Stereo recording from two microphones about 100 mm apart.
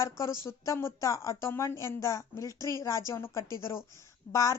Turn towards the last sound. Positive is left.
turn(degrees=30)  # may be behind; listen again after turning